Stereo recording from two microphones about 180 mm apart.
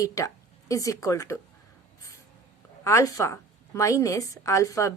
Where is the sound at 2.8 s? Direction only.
15° left (ahead or behind).